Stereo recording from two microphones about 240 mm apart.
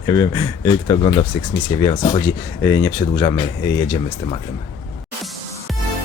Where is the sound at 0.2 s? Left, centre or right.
Centre.